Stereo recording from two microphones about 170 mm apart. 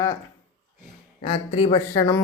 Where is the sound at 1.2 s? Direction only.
30° left (ahead or behind).